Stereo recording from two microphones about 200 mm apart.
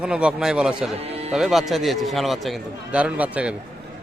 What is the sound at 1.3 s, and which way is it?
A man's voice, centre (ahead or behind).